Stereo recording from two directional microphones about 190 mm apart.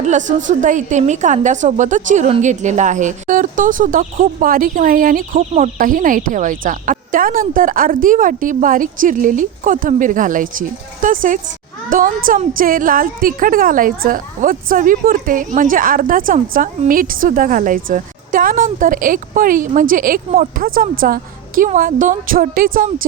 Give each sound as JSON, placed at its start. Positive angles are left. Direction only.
{"t": 0.3, "sound": "a woman's voice", "side_deg": -40}